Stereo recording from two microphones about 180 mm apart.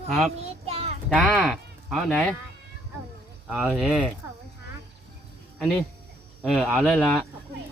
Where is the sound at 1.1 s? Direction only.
Centre (ahead or behind).